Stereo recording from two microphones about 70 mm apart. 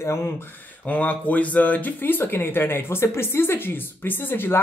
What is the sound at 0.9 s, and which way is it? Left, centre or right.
Speech, left.